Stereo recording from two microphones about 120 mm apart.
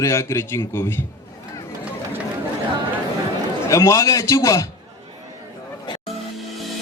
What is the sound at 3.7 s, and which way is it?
A man's voice, 25° left (ahead or behind).